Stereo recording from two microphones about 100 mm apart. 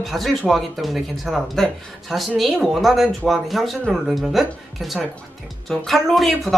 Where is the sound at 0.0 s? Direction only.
Centre (ahead or behind).